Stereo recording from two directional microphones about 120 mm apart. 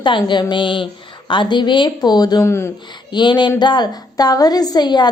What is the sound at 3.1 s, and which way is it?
A woman's voice, 40° left (ahead or behind).